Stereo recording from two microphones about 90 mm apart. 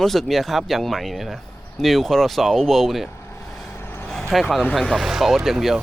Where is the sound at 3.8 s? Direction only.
25° left (ahead or behind).